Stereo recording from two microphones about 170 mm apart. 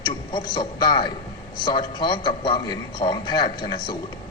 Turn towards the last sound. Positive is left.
turn(degrees=25)  # may be behind; listen again after turning